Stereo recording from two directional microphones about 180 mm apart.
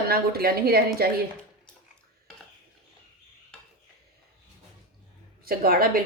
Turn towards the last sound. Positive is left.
turn(degrees=-55)  # may be behind; listen again after turning